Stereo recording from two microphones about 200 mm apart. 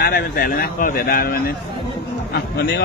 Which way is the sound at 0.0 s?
50° left (ahead or behind).